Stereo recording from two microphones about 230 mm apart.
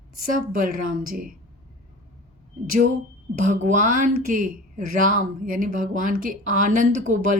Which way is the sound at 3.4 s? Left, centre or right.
Right.